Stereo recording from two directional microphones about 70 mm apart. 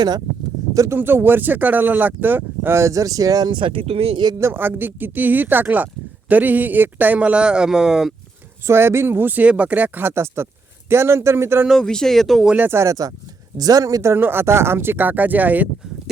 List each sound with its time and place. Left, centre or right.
0.9 s speech: right
2.7 s speech: right
4.4 s speech: right; by 8.1 s centre
8.6 s speech: right
10.1 s speech: right
11.8 s speech: centre
12.5 s speech: right
12.8 s speech: right
14.2 s speech: right